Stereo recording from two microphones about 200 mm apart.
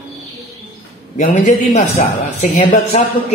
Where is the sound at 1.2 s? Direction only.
40° left (ahead or behind).